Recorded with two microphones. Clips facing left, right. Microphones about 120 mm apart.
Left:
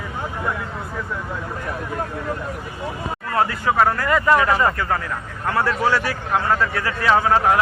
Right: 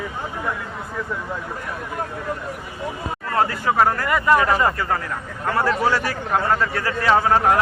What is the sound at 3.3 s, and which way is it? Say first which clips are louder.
A man's voice: even; 35° right (ahead or behind).